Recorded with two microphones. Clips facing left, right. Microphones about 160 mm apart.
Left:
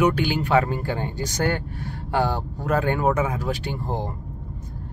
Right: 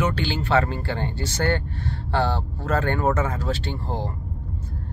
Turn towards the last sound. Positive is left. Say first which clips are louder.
# left 1 dB
turn(degrees=15)  # may be behind; listen again after turning